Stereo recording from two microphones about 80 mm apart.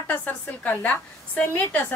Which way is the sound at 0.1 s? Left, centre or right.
Centre.